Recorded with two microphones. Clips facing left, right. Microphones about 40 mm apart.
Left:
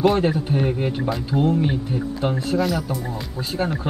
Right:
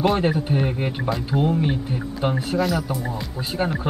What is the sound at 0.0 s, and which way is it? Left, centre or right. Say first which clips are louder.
Speech: left 2 dB; centre.